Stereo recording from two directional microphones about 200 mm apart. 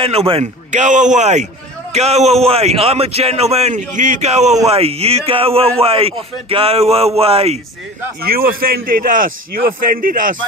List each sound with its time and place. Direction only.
0.0 s a man's voice: 30° right (ahead or behind)
8.2 s a man's voice: 50° right (ahead or behind)